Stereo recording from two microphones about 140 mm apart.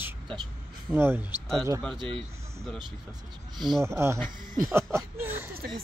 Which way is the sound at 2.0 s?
40° right (ahead or behind).